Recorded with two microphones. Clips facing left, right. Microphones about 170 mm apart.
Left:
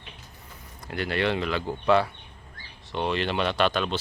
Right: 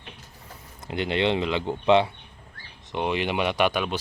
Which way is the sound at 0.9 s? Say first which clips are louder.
Right 2 dB; 20° right (ahead or behind).